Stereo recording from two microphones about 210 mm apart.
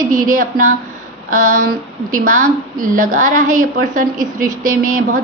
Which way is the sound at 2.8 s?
40° right (ahead or behind).